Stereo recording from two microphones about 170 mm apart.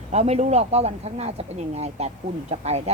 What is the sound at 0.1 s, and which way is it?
Speech, 40° right (ahead or behind).